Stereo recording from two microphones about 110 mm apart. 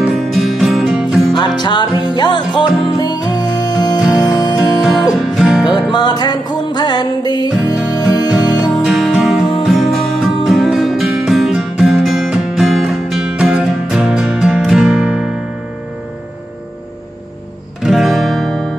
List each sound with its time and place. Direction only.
0.0 s music: centre (ahead or behind)
1.6 s music: 40° left (ahead or behind)
5.1 s music: centre (ahead or behind)
5.7 s music: 40° left (ahead or behind)
7.7 s music: centre (ahead or behind)
17.8 s guitar: centre (ahead or behind)